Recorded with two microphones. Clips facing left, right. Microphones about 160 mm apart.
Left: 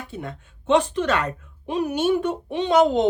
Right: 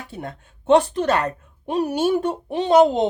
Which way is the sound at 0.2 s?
40° right (ahead or behind).